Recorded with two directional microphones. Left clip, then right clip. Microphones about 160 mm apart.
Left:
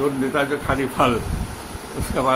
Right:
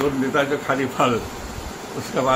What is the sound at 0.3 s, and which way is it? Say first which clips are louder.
Speech: right 1 dB; 25° left (ahead or behind).